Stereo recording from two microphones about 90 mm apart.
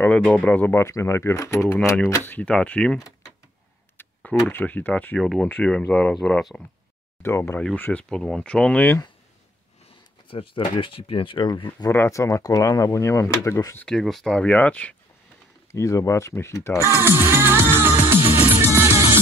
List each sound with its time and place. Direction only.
0.0 s speech: 15° left (ahead or behind)
0.8 s speech: 30° left (ahead or behind)
2.2 s speech: 20° left (ahead or behind)
4.0 s a sound: 15° left (ahead or behind)
4.5 s speech: 20° left (ahead or behind)
5.2 s speech: centre (ahead or behind)
5.5 s speech: 15° left (ahead or behind)
7.2 s speech: 25° left (ahead or behind)
7.7 s speech: 15° left (ahead or behind)
10.2 s speech: 85° left; by 11.9 s 55° left (ahead or behind)
11.9 s speech: 35° left (ahead or behind)
13.8 s speech: 5° left (ahead or behind)
15.7 s speech: 35° left (ahead or behind)
16.8 s music: 25° right (ahead or behind)